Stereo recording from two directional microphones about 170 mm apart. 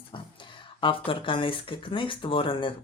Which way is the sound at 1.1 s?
30° left (ahead or behind).